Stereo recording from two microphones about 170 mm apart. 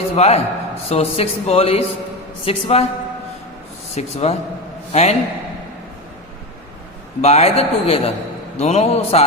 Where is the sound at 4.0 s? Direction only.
40° left (ahead or behind).